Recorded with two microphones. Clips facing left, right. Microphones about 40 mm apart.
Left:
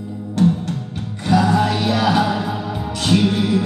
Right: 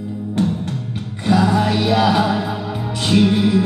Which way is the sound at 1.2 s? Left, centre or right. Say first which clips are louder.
Even; centre.